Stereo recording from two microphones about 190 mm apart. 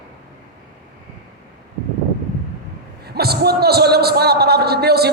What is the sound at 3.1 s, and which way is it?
A man's voice, 55° right (ahead or behind).